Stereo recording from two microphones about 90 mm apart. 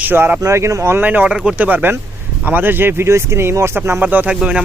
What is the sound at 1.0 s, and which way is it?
Speech, 15° right (ahead or behind).